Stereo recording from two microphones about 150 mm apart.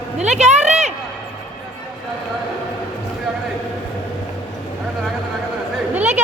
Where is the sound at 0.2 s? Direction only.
50° right (ahead or behind).